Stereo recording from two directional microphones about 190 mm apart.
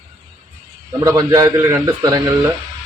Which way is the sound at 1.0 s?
20° right (ahead or behind).